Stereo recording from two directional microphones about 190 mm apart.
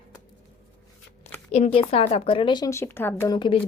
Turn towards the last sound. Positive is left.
turn(degrees=15)  # may be behind; listen again after turning